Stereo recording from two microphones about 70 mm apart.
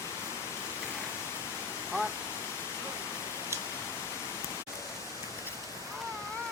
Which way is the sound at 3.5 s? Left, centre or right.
Right.